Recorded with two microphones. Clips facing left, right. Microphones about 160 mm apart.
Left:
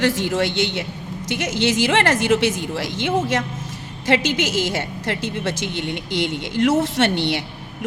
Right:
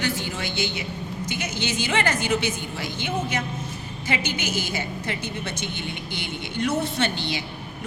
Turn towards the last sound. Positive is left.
turn(degrees=75)  # may be behind; listen again after turning